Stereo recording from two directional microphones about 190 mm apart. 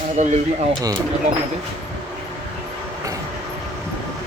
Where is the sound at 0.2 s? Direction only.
40° right (ahead or behind).